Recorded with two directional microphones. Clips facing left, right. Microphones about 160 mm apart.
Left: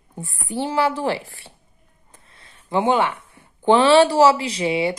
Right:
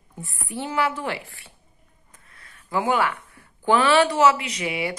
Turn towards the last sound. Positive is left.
turn(degrees=30)  # may be behind; listen again after turning